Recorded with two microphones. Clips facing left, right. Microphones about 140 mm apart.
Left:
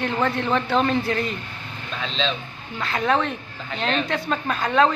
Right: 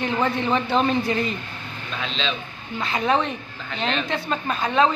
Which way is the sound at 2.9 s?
5° right (ahead or behind).